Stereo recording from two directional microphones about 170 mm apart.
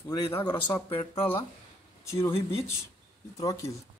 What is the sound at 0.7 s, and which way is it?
Speech, 30° left (ahead or behind).